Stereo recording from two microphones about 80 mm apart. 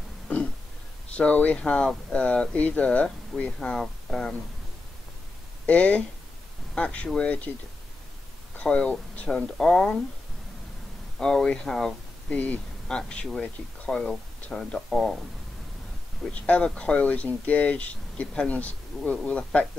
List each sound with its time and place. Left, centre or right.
1.1 s speech: centre
5.7 s speech: centre
8.5 s speech: centre
11.1 s speech: centre
16.3 s speech: centre